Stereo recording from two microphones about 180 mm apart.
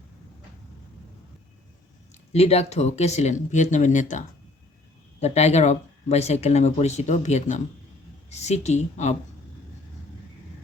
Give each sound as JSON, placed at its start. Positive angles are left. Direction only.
{"t": 2.3, "sound": "speech", "side_deg": 35}
{"t": 5.2, "sound": "speech", "side_deg": 35}